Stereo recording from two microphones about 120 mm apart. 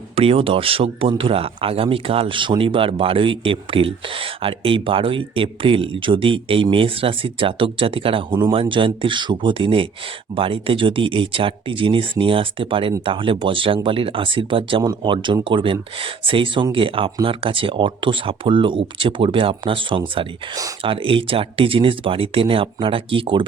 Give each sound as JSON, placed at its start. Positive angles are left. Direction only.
{"t": 0.2, "sound": "speech", "side_deg": -50}
{"t": 20.8, "sound": "speech", "side_deg": -45}